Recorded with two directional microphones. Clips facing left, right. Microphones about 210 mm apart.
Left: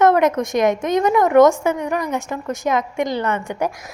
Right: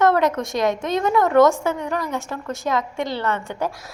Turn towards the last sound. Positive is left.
turn(degrees=15)  # may be behind; listen again after turning